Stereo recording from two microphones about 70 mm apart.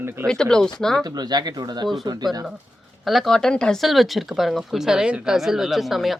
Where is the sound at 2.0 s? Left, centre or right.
Right.